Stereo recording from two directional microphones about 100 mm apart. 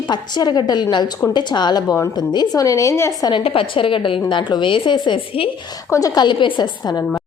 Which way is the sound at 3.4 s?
65° left (ahead or behind).